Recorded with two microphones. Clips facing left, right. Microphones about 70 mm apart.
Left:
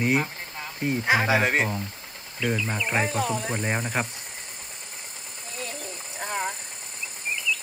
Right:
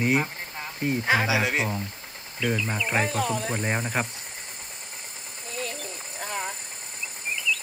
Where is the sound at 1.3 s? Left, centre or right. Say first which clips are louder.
Left 3 dB; left.